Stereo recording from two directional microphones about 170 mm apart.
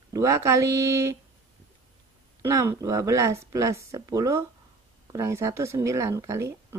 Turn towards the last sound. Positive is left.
turn(degrees=-15)  # may be behind; listen again after turning